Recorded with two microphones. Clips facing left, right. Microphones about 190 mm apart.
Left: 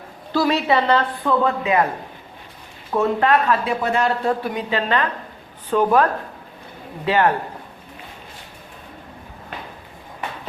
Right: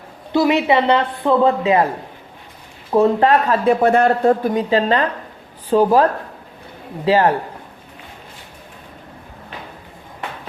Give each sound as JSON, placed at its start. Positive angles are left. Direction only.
{"t": 0.3, "sound": "a man's voice", "side_deg": -20}
{"t": 2.9, "sound": "speech", "side_deg": -30}
{"t": 3.7, "sound": "a woman's voice", "side_deg": -55}